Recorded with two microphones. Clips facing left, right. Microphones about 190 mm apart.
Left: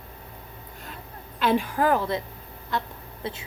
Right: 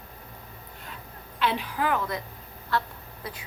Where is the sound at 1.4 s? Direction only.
45° left (ahead or behind).